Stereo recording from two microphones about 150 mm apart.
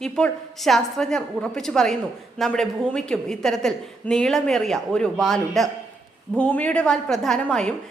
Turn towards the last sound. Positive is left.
turn(degrees=5)  # may be behind; listen again after turning